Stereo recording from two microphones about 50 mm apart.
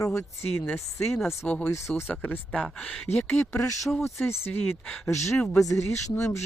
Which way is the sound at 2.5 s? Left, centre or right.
Left.